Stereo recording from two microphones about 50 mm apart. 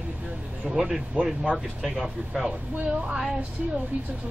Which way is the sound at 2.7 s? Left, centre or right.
Right.